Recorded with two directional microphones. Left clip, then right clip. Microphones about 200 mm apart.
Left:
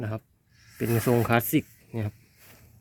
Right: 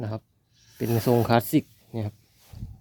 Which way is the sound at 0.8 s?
5° right (ahead or behind).